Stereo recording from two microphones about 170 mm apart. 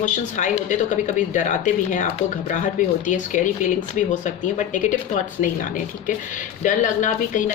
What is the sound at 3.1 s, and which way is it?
A woman's voice, 45° left (ahead or behind).